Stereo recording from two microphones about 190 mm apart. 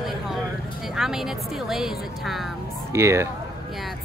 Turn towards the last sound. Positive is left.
turn(degrees=-15)  # may be behind; listen again after turning